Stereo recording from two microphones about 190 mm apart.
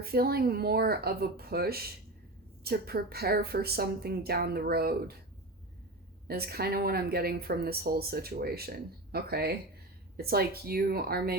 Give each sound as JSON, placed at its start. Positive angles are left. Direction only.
{"t": 0.0, "sound": "a woman's voice", "side_deg": -55}
{"t": 6.2, "sound": "a woman's voice", "side_deg": -55}